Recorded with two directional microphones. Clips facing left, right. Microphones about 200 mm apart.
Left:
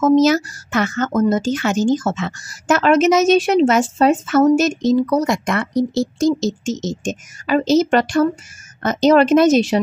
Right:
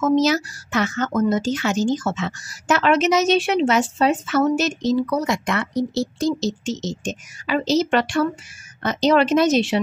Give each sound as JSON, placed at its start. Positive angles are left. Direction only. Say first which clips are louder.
{"t": 0.0, "sound": "speech", "louder": "left 5 dB", "side_deg": 50}